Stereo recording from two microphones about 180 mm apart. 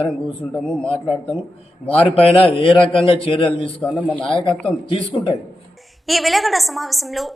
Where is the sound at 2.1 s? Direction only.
30° left (ahead or behind).